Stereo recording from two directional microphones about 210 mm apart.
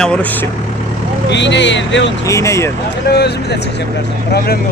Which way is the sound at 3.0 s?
50° left (ahead or behind).